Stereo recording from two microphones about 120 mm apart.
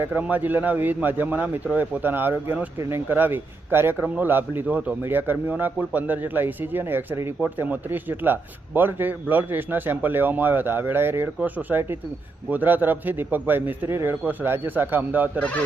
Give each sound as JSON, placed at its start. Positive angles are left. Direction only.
{"t": 0.0, "sound": "speech", "side_deg": -15}